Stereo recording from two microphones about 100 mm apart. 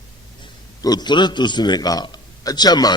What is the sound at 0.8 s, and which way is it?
A man's voice, 45° left (ahead or behind).